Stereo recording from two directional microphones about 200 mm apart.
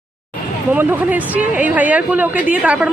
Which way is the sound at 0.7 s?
10° right (ahead or behind).